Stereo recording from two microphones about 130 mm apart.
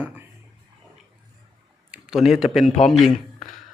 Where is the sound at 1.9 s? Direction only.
5° right (ahead or behind).